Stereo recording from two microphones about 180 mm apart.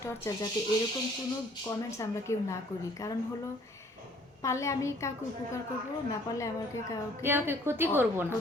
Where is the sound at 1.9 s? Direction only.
15° left (ahead or behind).